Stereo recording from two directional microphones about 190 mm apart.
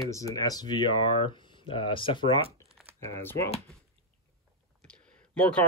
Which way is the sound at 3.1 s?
15° left (ahead or behind).